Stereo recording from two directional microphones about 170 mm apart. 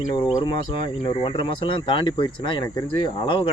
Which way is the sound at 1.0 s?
30° left (ahead or behind).